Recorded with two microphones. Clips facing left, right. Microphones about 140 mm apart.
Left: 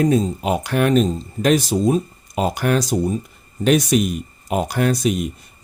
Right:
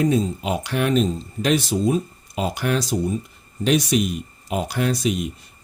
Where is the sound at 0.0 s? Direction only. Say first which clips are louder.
Left 3 dB; 45° left (ahead or behind).